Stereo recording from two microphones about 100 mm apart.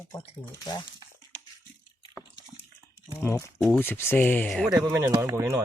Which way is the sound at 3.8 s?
20° left (ahead or behind).